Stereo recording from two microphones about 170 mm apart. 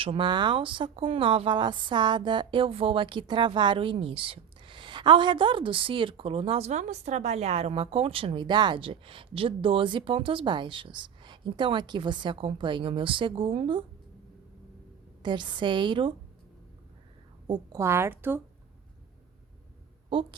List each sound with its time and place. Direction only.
0.0 s speech: 30° right (ahead or behind)
15.2 s a woman's voice: 25° right (ahead or behind)
17.4 s a woman's voice: 25° right (ahead or behind)